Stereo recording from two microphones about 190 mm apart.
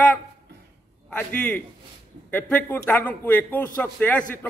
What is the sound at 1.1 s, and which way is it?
A man's voice, 10° left (ahead or behind).